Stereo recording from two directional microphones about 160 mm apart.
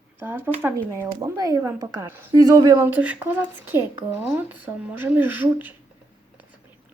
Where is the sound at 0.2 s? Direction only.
10° right (ahead or behind).